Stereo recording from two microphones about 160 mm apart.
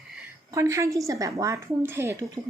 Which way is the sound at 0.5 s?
20° right (ahead or behind).